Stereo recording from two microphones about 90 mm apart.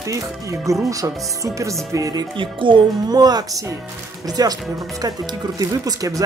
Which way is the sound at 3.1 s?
45° right (ahead or behind).